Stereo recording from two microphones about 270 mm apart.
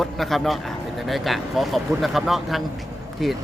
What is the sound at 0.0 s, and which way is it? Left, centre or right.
Speech, centre.